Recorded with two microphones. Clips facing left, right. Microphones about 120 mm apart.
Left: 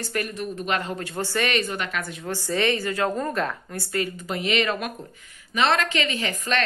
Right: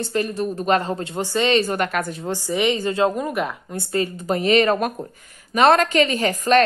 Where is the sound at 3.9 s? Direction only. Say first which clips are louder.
Right 6 dB; 30° right (ahead or behind).